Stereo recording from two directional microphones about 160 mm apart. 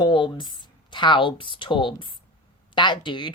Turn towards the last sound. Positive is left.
turn(degrees=30)  # may be behind; listen again after turning